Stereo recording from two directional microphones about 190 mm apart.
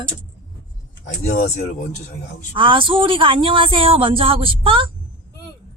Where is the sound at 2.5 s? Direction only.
25° right (ahead or behind).